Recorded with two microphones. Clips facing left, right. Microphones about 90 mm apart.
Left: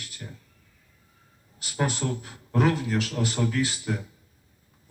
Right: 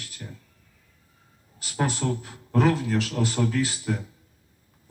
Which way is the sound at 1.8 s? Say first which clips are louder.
Right 1 dB; 30° right (ahead or behind).